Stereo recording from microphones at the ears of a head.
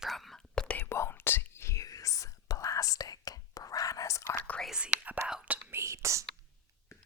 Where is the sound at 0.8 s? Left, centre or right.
Left.